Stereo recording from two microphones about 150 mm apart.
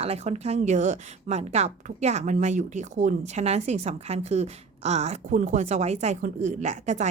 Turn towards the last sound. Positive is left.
turn(degrees=-50)  # may be behind; listen again after turning